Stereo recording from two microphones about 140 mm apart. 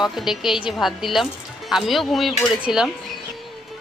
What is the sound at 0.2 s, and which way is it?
A woman's voice, 5° right (ahead or behind).